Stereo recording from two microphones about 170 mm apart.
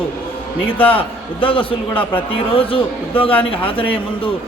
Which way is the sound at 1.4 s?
30° left (ahead or behind).